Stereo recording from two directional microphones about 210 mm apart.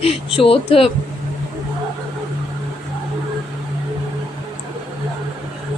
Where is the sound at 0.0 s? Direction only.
25° left (ahead or behind).